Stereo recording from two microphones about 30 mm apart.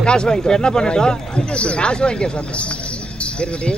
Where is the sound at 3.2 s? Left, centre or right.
Left.